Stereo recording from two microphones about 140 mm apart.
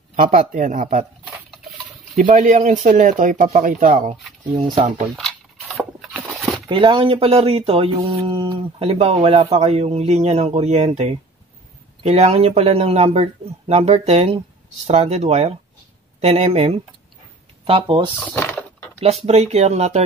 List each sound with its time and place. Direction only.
0.1 s speech: 65° right (ahead or behind)
2.1 s speech: 70° right (ahead or behind)
3.6 s speech: 80° right; by 5.0 s 55° right (ahead or behind)
5.1 s a sound: centre (ahead or behind)
6.7 s speech: 35° right (ahead or behind)
18.2 s a sound: 15° left (ahead or behind)
18.9 s speech: 50° right (ahead or behind)